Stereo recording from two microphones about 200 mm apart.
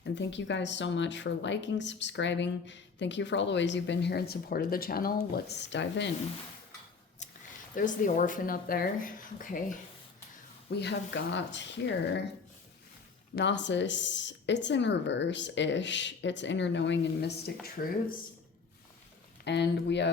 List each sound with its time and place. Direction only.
0.0 s speech: 65° left (ahead or behind)
7.8 s speech: 40° left (ahead or behind)
10.7 s speech: 55° left (ahead or behind)
13.3 s speech: 65° left (ahead or behind); by 17.9 s 45° left (ahead or behind)
19.5 s speech: 60° left (ahead or behind)